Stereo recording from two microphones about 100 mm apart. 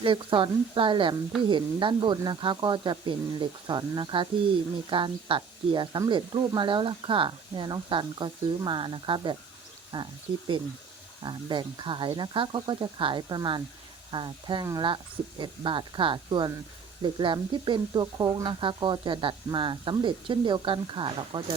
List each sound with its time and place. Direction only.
0.0 s speech: 55° right (ahead or behind)